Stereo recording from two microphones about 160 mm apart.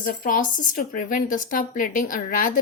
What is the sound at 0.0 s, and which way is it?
A woman's voice, 60° left (ahead or behind).